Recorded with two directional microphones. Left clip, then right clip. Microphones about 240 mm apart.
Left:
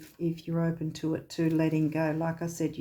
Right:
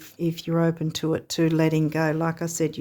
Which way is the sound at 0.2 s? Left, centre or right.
Right.